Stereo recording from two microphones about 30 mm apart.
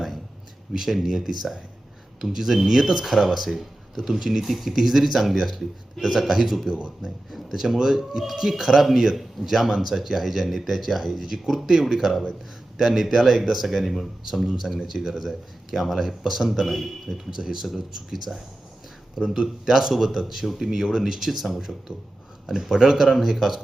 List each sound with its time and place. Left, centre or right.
0.9 s speech: centre
4.4 s speech: centre
6.0 s speech: centre
6.4 s speech: centre
8.2 s speech: centre
19.9 s speech: centre
21.1 s speech: centre